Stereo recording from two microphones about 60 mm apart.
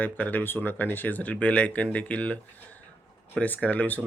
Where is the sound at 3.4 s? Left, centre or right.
Left.